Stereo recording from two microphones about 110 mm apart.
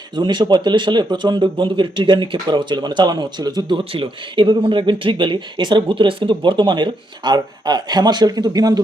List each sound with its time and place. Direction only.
0.2 s speech: 45° right (ahead or behind)